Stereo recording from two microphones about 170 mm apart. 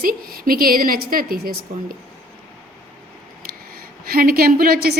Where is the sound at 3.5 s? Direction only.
60° right (ahead or behind).